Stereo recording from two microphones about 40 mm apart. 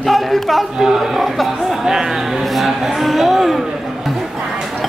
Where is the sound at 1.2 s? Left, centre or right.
Centre.